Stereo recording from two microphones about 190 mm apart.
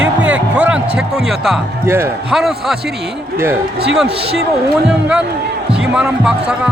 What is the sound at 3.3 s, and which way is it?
Speech, 15° right (ahead or behind).